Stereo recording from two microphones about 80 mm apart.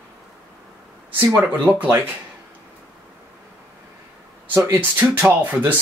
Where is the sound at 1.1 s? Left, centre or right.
Right.